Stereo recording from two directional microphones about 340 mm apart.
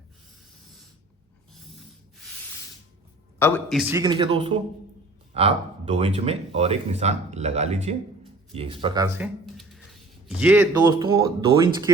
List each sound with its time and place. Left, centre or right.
3.3 s speech: centre